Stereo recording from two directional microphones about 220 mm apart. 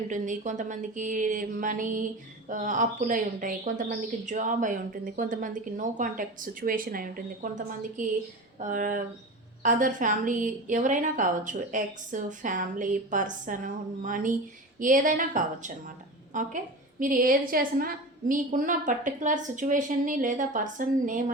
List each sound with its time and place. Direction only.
0.1 s speech: 35° right (ahead or behind)
8.5 s speech: 35° right (ahead or behind)